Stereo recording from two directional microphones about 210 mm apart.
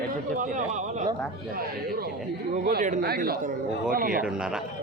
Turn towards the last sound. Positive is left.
turn(degrees=-5)  # may be behind; listen again after turning